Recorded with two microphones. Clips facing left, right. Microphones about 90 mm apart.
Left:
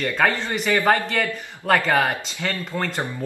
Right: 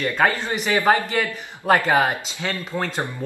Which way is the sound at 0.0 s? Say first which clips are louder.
Right 1 dB; 15° right (ahead or behind).